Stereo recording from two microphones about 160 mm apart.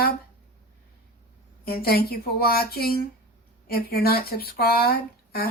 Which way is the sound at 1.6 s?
75° left (ahead or behind).